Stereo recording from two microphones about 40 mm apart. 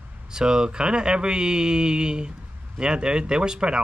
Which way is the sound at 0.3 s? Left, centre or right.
Centre.